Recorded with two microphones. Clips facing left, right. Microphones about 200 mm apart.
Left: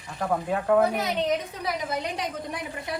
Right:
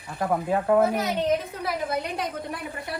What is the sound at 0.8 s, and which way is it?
Speech, centre (ahead or behind).